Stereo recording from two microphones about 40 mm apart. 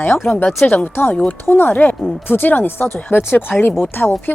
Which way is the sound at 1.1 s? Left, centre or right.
Left.